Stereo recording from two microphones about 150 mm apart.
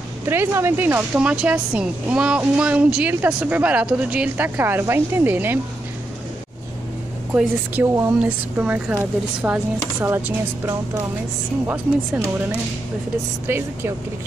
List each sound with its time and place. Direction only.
0.3 s a woman's voice: 15° right (ahead or behind)
7.3 s speech: 5° right (ahead or behind)
7.8 s a woman's voice: 20° right (ahead or behind)
13.5 s a woman's voice: 15° right (ahead or behind)